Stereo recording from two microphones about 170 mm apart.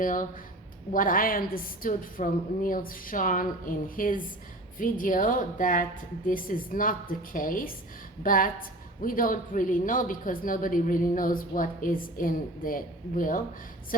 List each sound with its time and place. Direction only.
0.0 s a woman's voice: 50° left (ahead or behind)